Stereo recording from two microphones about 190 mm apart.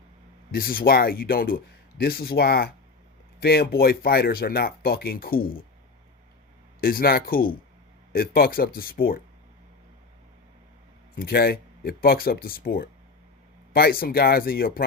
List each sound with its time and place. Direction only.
0.5 s speech: 50° left (ahead or behind)
6.8 s speech: 50° left (ahead or behind)
11.2 s speech: 55° left (ahead or behind)